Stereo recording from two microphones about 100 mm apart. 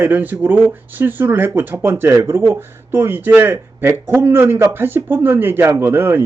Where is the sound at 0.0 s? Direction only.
15° right (ahead or behind).